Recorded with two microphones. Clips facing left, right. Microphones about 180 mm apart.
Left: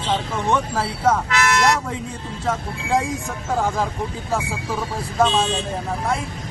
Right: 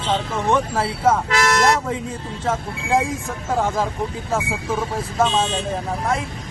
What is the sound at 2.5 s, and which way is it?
Speech, 5° right (ahead or behind).